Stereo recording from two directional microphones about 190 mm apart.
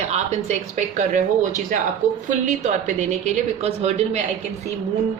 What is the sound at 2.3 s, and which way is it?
Speech, 40° right (ahead or behind).